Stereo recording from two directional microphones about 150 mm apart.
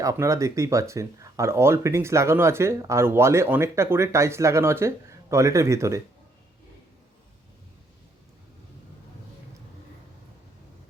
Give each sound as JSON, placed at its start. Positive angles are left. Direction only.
{"t": 0.0, "sound": "speech", "side_deg": -20}